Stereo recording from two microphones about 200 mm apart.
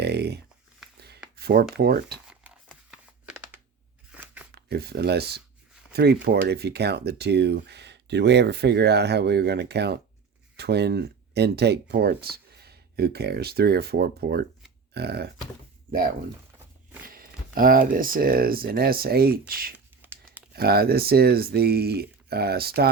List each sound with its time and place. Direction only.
0.0 s a sound: 55° right (ahead or behind)
1.7 s speech: 50° right (ahead or behind)
2.6 s a sound: centre (ahead or behind)
4.5 s speech: 50° right (ahead or behind)
17.1 s speech: 45° right (ahead or behind)
20.0 s crunch: 10° right (ahead or behind)
20.5 s speech: 50° right (ahead or behind)